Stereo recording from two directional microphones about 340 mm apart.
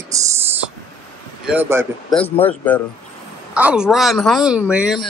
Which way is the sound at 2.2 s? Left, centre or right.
Centre.